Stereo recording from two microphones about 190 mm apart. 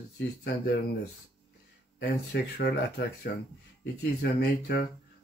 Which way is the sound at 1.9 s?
60° left (ahead or behind).